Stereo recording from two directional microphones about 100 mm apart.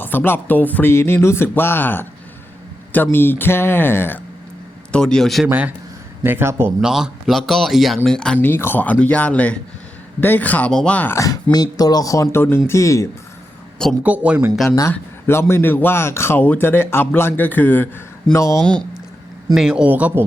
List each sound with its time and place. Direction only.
0.0 s speech: 20° left (ahead or behind)
4.9 s speech: 10° left (ahead or behind)
5.5 s speech: 15° right (ahead or behind)
6.8 s speech: 5° right (ahead or behind)
8.4 s speech: 20° left (ahead or behind)
11.1 s speech: 35° left (ahead or behind)
14.0 s speech: 15° right (ahead or behind)
15.3 s speech: 25° left (ahead or behind)
19.5 s speech: 10° right (ahead or behind)